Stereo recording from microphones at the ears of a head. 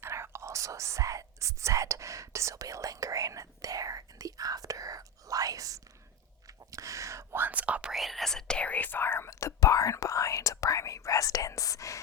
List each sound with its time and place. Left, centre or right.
0.0 s speech: right
8.1 s speech: centre
8.9 s speech: left